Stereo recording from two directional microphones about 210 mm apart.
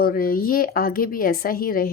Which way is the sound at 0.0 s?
45° left (ahead or behind).